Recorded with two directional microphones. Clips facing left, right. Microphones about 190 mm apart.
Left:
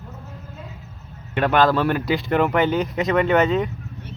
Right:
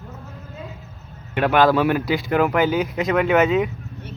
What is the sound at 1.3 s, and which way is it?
Speech, 10° right (ahead or behind).